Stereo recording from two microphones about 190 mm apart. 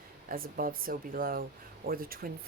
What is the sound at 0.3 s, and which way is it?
Speech, 50° right (ahead or behind).